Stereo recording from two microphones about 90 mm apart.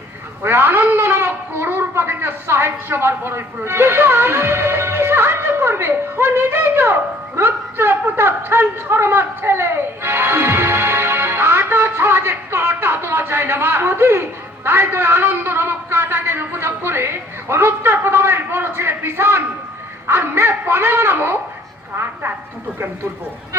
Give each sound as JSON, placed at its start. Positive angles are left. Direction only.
{"t": 0.4, "sound": "speech", "side_deg": -25}